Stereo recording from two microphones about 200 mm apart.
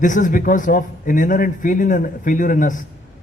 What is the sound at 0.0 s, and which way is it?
A man's voice, 40° left (ahead or behind).